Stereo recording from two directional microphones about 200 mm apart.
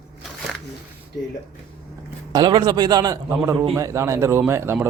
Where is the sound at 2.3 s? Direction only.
20° right (ahead or behind).